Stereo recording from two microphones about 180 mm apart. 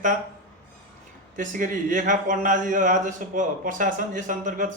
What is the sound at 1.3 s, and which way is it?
Speech, 45° right (ahead or behind).